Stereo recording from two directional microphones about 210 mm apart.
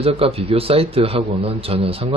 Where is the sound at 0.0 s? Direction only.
30° right (ahead or behind).